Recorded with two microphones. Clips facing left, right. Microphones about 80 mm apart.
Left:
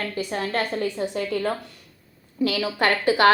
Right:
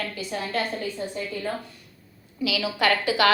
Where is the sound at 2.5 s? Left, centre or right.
Left.